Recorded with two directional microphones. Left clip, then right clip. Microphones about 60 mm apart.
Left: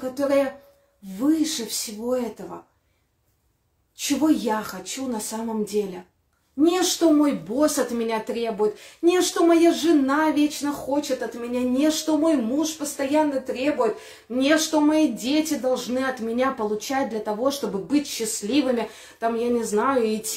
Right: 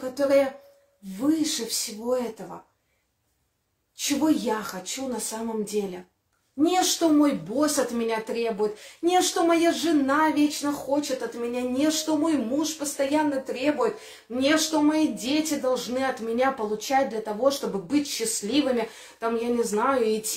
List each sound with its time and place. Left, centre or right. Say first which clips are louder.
0.0 s a woman's voice: even; right
3.9 s a woman's voice: left 2 dB; right